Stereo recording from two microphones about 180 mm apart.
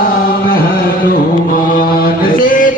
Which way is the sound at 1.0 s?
50° left (ahead or behind).